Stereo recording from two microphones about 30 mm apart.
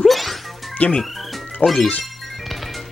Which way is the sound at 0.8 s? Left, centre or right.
Left.